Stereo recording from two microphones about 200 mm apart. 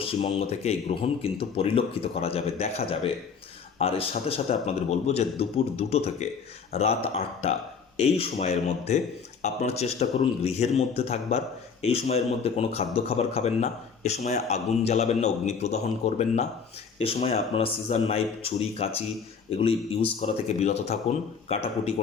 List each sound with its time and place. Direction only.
0.0 s speech: 30° left (ahead or behind)